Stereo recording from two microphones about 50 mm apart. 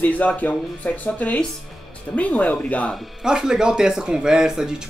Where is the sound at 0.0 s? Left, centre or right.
Left.